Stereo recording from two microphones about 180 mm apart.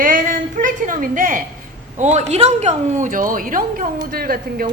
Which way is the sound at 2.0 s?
40° right (ahead or behind).